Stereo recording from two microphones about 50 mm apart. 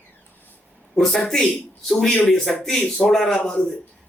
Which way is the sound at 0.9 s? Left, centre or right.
Centre.